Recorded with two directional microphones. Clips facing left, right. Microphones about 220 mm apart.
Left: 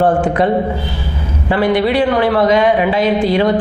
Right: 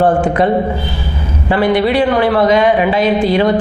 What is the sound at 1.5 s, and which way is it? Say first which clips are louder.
Speech: right 1 dB; 20° right (ahead or behind).